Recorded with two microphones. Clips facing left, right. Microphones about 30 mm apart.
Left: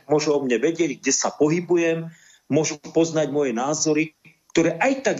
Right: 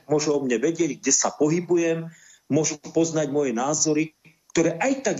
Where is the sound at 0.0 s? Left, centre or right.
Centre.